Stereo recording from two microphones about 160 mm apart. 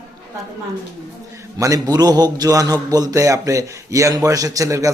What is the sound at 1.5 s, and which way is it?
A man's voice, 20° right (ahead or behind).